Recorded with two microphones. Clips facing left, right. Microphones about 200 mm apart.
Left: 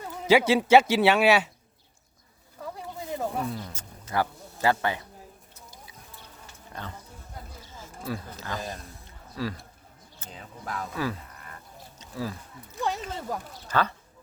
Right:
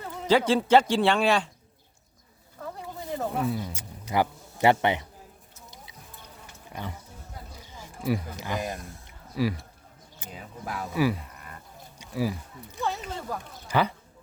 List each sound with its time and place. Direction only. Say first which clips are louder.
0.0 s a man's voice: left 2 dB; 10° left (ahead or behind)
3.2 s speech: right 3 dB; 5° right (ahead or behind); by 5.0 s 20° right (ahead or behind)
6.7 s speech: right 2 dB; 10° right (ahead or behind)
7.6 s a sound: right 7 dB; 15° right (ahead or behind)
10.2 s speech: right 2 dB; 10° right (ahead or behind)
12.8 s a sound: left 1 dB; 15° left (ahead or behind)
13.7 s speech: right 2 dB; 15° right (ahead or behind)